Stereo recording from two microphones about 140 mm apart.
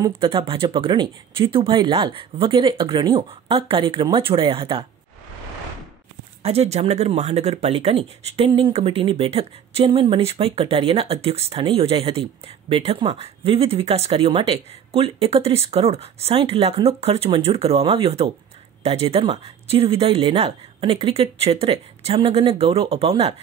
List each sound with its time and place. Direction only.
0.1 s speech: 40° right (ahead or behind)
6.4 s speech: 50° right (ahead or behind)